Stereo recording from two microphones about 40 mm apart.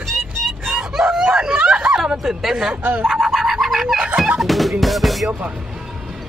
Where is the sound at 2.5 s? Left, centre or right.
Right.